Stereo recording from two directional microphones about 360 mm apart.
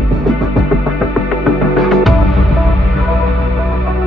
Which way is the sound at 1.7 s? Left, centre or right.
Centre.